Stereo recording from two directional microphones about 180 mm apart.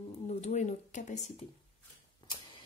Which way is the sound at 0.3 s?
40° left (ahead or behind).